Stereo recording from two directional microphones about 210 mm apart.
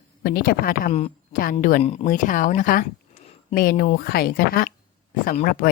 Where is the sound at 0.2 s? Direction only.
45° left (ahead or behind).